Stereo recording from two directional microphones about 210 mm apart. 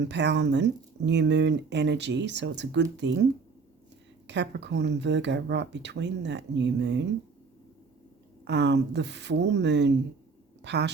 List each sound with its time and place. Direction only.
0.0 s speech: 55° right (ahead or behind)
4.3 s speech: 55° right (ahead or behind)
8.4 s speech: 55° right (ahead or behind)